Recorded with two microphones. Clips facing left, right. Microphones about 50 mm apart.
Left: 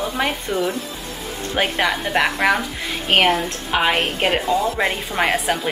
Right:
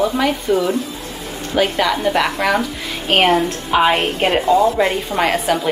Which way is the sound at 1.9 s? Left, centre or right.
Centre.